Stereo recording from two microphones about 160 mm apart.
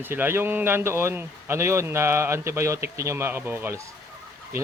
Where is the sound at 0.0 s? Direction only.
15° right (ahead or behind).